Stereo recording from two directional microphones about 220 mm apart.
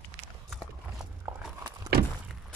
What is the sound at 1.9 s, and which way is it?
Walk, 45° right (ahead or behind).